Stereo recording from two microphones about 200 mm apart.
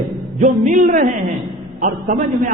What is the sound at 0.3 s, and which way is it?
A man's voice, 40° right (ahead or behind).